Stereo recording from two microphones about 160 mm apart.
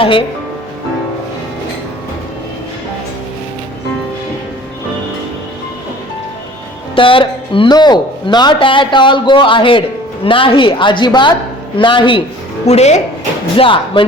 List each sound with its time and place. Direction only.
0.0 s speech: 35° left (ahead or behind)
6.9 s speech: 35° left (ahead or behind)
12.6 s speech: 45° left (ahead or behind)
13.6 s speech: 30° left (ahead or behind)